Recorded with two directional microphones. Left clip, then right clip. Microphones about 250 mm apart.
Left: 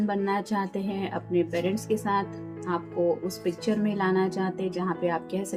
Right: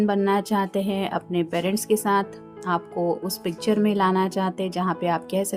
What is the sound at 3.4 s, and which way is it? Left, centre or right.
A woman's voice, right.